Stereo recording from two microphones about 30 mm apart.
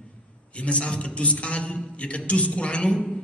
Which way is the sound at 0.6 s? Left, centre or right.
Left.